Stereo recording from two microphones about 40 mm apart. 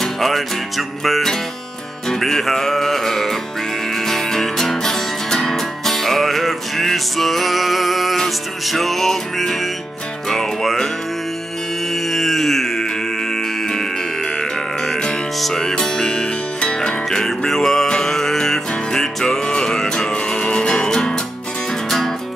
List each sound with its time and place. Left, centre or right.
0.0 s music: centre
11.9 s a sound: centre
13.3 s music: centre
15.5 s music: centre